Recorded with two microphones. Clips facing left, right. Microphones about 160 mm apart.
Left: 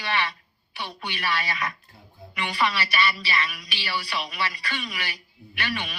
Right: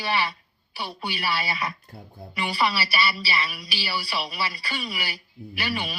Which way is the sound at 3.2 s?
35° right (ahead or behind).